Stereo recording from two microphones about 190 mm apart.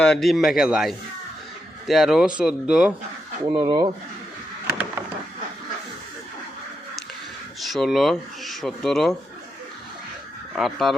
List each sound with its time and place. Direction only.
0.0 s speech: centre (ahead or behind)
3.4 s speech: 20° right (ahead or behind)
7.7 s speech: centre (ahead or behind)
10.5 s speech: centre (ahead or behind)